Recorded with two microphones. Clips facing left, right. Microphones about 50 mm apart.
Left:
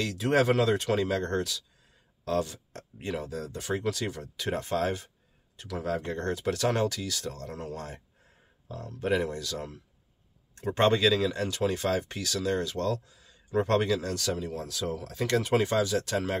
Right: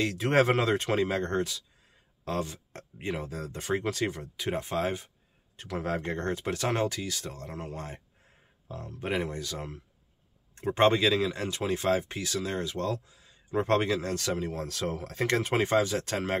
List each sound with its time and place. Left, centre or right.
0.0 s speech: right; by 5.1 s centre
5.6 s speech: right